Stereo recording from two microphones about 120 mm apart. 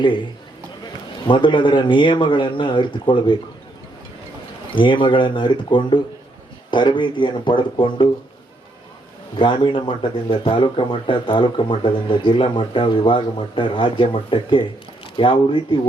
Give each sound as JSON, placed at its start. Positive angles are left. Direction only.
{"t": 0.0, "sound": "speech", "side_deg": 40}
{"t": 1.3, "sound": "speech", "side_deg": 40}
{"t": 4.7, "sound": "speech", "side_deg": 45}
{"t": 9.4, "sound": "speech", "side_deg": 45}